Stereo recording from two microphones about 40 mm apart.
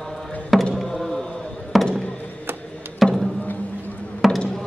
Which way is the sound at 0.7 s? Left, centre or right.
Centre.